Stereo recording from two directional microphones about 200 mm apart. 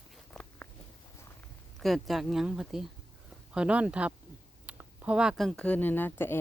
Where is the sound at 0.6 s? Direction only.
10° left (ahead or behind).